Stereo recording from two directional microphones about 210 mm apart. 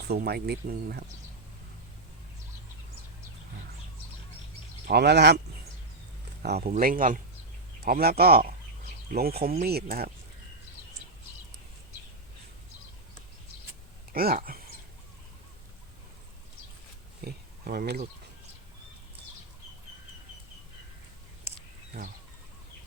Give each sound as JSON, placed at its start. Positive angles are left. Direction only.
{"t": 0.1, "sound": "speech", "side_deg": -50}
{"t": 4.9, "sound": "speech", "side_deg": -50}
{"t": 6.4, "sound": "speech", "side_deg": -45}
{"t": 14.1, "sound": "speech", "side_deg": -45}
{"t": 17.2, "sound": "speech", "side_deg": -50}
{"t": 22.0, "sound": "speech", "side_deg": -45}